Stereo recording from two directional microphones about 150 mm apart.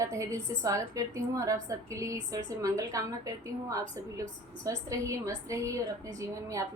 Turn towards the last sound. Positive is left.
turn(degrees=-20)  # may be behind; listen again after turning